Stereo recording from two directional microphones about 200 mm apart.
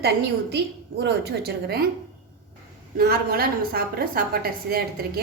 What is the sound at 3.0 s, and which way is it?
A woman's voice, 50° right (ahead or behind).